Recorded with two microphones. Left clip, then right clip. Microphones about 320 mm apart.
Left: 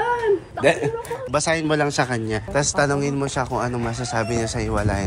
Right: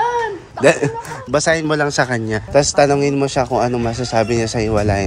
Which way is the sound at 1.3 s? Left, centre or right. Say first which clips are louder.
Right 5 dB; centre.